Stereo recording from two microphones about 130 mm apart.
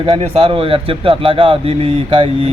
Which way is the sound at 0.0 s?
45° right (ahead or behind).